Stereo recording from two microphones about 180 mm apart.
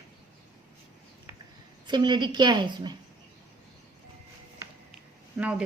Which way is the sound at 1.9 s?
25° right (ahead or behind).